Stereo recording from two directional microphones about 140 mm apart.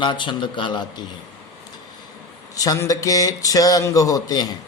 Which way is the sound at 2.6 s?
25° left (ahead or behind).